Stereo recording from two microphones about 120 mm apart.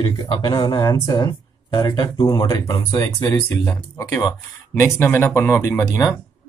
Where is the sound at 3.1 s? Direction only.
45° left (ahead or behind).